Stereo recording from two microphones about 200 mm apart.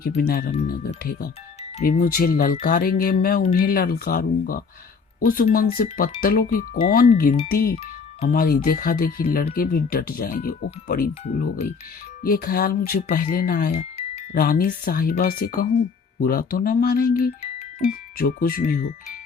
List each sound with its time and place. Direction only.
0.2 s speech: 50° left (ahead or behind)
2.0 s speech: 45° left (ahead or behind)
17.4 s music: 30° left (ahead or behind)
18.2 s speech: 45° left (ahead or behind)